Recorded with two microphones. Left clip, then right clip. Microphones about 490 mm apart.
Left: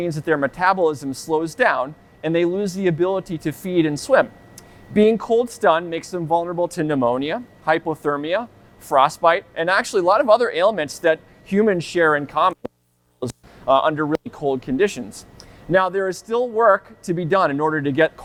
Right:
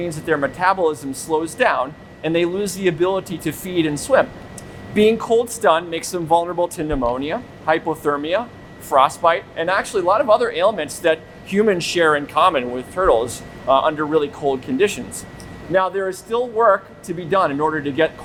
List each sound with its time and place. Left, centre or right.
0.0 s speech: left
13.7 s speech: left